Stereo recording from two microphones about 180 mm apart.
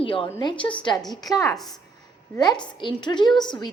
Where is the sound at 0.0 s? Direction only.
30° left (ahead or behind).